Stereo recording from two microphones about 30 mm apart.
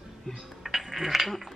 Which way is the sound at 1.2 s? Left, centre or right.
Centre.